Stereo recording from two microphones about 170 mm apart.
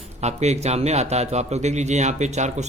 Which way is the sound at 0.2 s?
40° right (ahead or behind).